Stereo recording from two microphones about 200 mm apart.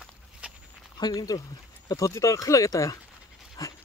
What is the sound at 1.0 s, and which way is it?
Speech, 20° left (ahead or behind).